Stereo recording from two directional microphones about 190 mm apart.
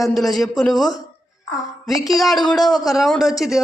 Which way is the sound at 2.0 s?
Centre (ahead or behind).